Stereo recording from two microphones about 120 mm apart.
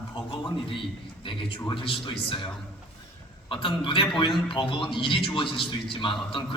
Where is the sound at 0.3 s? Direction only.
45° left (ahead or behind).